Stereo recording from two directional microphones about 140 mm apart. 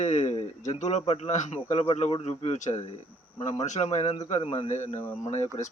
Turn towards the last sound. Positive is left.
turn(degrees=50)  # may be behind; listen again after turning